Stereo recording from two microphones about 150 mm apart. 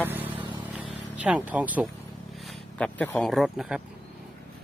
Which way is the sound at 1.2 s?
10° right (ahead or behind).